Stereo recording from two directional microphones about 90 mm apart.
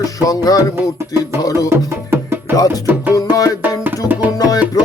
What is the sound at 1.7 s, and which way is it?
Music, 25° right (ahead or behind).